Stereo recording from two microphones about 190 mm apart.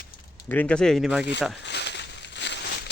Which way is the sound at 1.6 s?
65° left (ahead or behind).